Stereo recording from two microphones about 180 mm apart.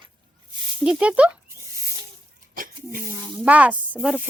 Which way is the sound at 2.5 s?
50° right (ahead or behind).